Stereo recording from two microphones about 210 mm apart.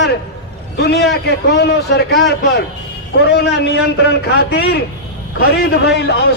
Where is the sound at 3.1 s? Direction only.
50° left (ahead or behind).